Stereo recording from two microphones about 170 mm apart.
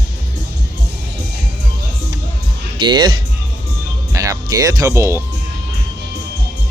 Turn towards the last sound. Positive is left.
turn(degrees=-15)  # may be behind; listen again after turning